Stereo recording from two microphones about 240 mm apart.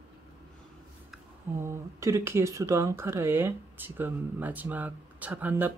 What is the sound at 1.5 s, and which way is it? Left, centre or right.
Speech, centre.